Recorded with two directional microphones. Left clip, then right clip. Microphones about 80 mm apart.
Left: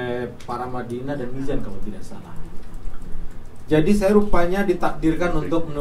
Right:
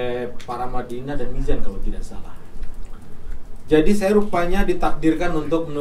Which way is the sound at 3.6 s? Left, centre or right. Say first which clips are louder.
Right 1 dB; right.